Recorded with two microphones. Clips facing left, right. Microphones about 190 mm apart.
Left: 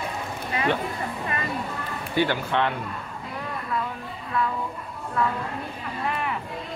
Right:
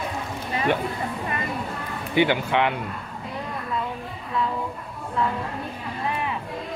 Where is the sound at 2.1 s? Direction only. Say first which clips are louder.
Right 3 dB; 15° right (ahead or behind).